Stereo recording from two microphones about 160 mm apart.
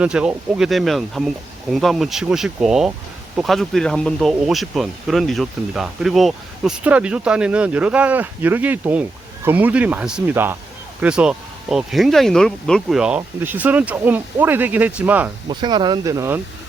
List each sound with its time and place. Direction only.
0.0 s speech: 5° right (ahead or behind)
15.4 s speech: 30° right (ahead or behind)